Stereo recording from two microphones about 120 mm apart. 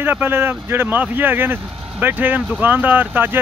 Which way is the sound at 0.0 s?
15° right (ahead or behind).